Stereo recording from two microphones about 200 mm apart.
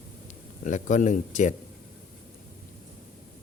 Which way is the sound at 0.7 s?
40° left (ahead or behind).